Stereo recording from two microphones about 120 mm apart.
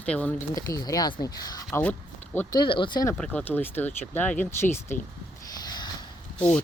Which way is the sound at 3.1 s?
10° left (ahead or behind).